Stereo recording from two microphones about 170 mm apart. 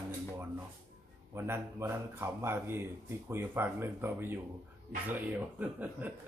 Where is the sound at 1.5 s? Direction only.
15° right (ahead or behind).